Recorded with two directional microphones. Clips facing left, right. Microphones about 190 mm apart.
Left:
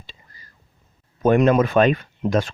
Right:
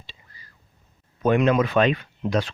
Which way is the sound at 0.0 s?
50° left (ahead or behind).